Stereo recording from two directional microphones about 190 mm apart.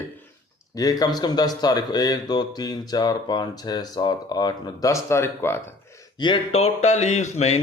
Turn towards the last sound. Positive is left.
turn(degrees=35)  # may be behind; listen again after turning